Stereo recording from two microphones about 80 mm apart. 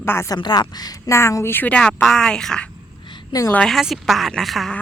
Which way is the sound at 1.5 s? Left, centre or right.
Left.